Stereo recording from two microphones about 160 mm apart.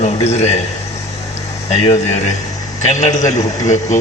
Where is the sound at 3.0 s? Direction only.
45° left (ahead or behind).